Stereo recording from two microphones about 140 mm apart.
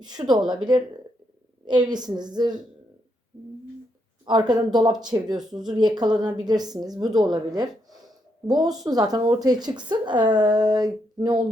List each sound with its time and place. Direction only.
0.0 s a woman's voice: 30° right (ahead or behind)
1.6 s a woman's voice: 30° right (ahead or behind)
4.3 s a woman's voice: 30° right (ahead or behind)